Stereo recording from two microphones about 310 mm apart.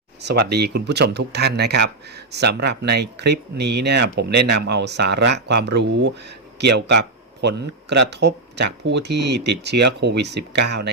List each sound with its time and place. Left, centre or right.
0.2 s speech: right